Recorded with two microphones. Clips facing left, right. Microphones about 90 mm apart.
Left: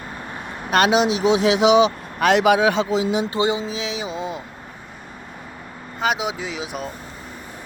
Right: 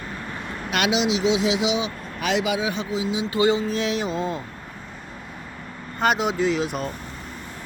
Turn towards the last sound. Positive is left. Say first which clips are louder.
# right 5 dB
turn(degrees=5)  # may be behind; listen again after turning